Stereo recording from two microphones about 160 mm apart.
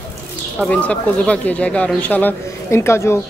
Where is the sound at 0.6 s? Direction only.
5° left (ahead or behind).